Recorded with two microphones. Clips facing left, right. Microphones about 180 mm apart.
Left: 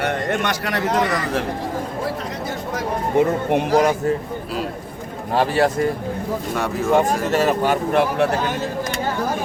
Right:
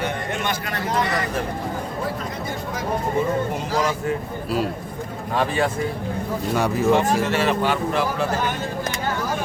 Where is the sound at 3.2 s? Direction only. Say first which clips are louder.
Left 5 dB; 70° left (ahead or behind).